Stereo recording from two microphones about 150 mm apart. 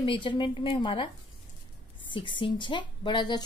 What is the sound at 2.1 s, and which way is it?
A woman's voice, 35° left (ahead or behind).